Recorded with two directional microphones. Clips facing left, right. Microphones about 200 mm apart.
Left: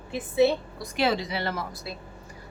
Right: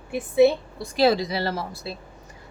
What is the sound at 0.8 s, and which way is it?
A woman's voice, 35° right (ahead or behind).